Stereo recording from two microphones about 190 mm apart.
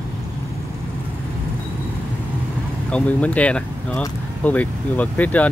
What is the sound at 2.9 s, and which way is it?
Speech, 5° left (ahead or behind).